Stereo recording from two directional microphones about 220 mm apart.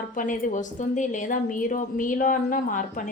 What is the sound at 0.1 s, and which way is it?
A woman's voice, 35° left (ahead or behind).